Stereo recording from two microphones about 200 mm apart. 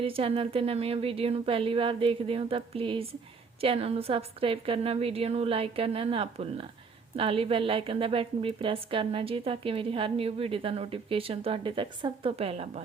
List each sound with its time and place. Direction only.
0.0 s a woman's voice: 30° right (ahead or behind)